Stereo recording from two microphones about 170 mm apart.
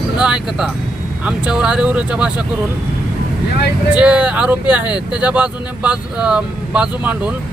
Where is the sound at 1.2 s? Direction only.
5° right (ahead or behind).